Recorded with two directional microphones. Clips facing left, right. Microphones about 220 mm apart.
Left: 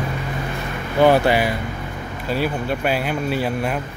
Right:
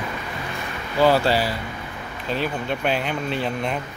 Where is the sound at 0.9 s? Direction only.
20° left (ahead or behind).